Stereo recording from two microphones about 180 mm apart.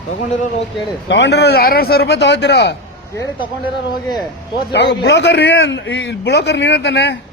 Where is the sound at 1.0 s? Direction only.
80° left.